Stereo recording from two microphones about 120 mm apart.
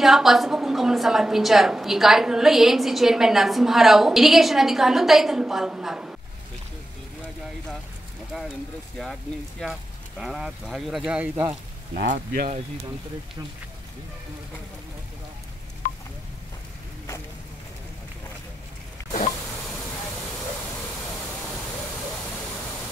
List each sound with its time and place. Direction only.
0.0 s a woman's voice: centre (ahead or behind)
9.6 s a woman's voice: centre (ahead or behind)
11.1 s speech: 10° right (ahead or behind)
11.9 s speech: 80° right